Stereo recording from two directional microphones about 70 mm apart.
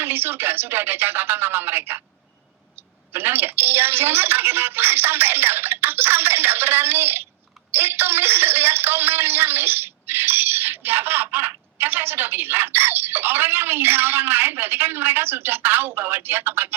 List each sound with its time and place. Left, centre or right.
0.0 s a man's voice: right
3.1 s a man's voice: right